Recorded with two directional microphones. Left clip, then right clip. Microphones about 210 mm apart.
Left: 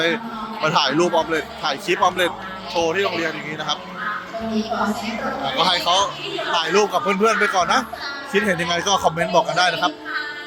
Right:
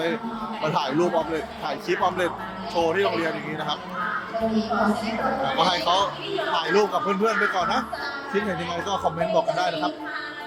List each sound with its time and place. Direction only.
0.6 s a man's voice: centre (ahead or behind)
4.7 s a woman's voice: 55° left (ahead or behind)
5.5 s a man's voice: 5° left (ahead or behind)